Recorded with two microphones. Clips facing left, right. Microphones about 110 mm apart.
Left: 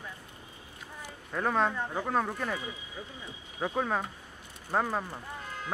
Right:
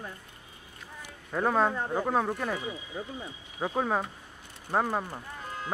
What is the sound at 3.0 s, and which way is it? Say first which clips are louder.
Speech: right 7 dB; 50° right (ahead or behind).